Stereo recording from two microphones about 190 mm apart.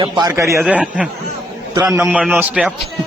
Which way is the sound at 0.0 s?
20° right (ahead or behind).